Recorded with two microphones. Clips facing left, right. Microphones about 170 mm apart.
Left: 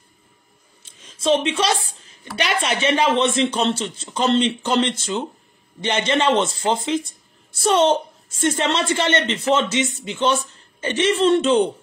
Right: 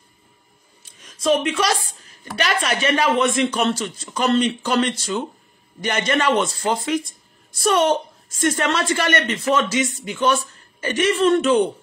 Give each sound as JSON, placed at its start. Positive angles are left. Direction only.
{"t": 1.0, "sound": "a woman's voice", "side_deg": 25}